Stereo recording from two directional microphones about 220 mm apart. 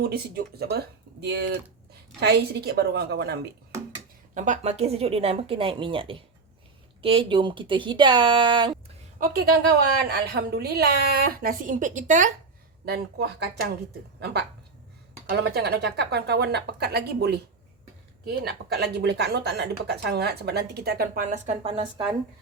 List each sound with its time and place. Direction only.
0.0 s speech: 45° right (ahead or behind)
4.4 s speech: 35° right (ahead or behind)
9.2 s speech: 45° right (ahead or behind)
12.8 s speech: 45° right (ahead or behind); by 22.0 s 25° right (ahead or behind)